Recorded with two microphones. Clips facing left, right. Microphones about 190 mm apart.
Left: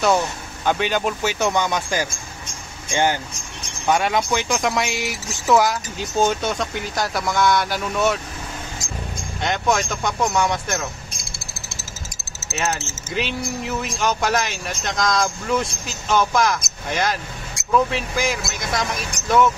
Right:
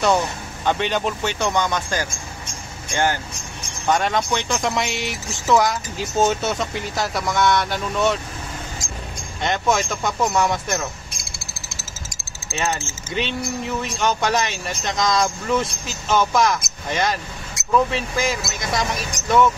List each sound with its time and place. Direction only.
0.7 s speech: 5° left (ahead or behind)
9.4 s speech: centre (ahead or behind)
12.4 s speech: 5° left (ahead or behind)